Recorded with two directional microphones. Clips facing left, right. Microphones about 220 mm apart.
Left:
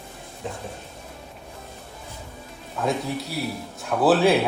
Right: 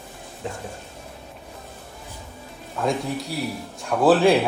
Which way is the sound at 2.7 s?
Centre (ahead or behind).